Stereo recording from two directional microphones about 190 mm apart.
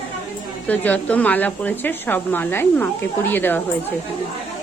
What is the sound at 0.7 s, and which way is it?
Speech, 5° left (ahead or behind).